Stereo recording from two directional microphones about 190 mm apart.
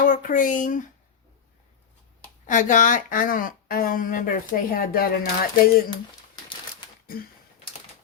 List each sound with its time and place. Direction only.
0.0 s speech: 45° left (ahead or behind)
2.5 s speech: 40° left (ahead or behind)